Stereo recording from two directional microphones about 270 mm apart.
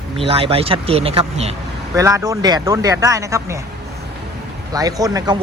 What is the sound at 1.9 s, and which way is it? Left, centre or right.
A man's voice, centre.